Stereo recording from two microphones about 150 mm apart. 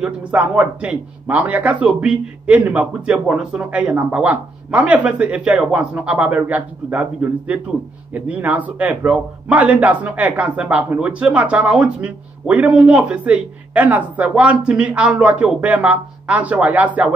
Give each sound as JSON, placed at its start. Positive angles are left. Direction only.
{"t": 0.0, "sound": "a man's voice", "side_deg": -5}